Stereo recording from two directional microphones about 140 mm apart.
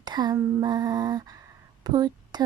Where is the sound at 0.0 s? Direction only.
30° right (ahead or behind).